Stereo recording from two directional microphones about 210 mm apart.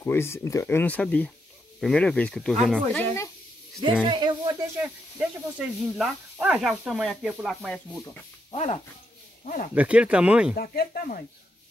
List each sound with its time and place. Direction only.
0.0 s speech: 10° left (ahead or behind)
4.0 s speech: 20° right (ahead or behind)
4.8 s speech: 5° right (ahead or behind)
8.5 s speech: 30° left (ahead or behind)
9.8 s speech: 5° right (ahead or behind)
10.5 s speech: 45° left (ahead or behind)